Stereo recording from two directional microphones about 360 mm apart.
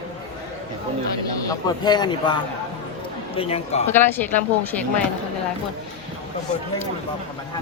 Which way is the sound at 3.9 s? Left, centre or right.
Centre.